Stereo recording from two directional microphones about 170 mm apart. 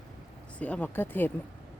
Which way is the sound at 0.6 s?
10° left (ahead or behind).